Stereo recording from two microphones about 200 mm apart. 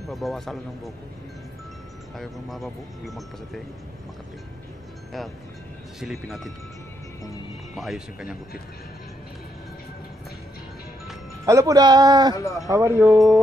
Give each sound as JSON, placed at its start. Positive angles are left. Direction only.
{"t": 0.1, "sound": "speech", "side_deg": 0}
{"t": 2.1, "sound": "speech", "side_deg": 0}
{"t": 5.9, "sound": "speech", "side_deg": 0}
{"t": 7.7, "sound": "speech", "side_deg": 0}
{"t": 11.4, "sound": "a man's voice", "side_deg": -15}
{"t": 12.4, "sound": "speech", "side_deg": 15}
{"t": 12.6, "sound": "speech", "side_deg": -15}